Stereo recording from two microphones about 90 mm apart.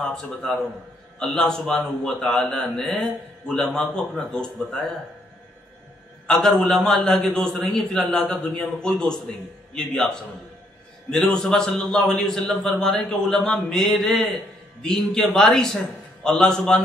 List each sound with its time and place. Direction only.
0.1 s a man's voice: 10° left (ahead or behind)
6.2 s a man's voice: 5° left (ahead or behind)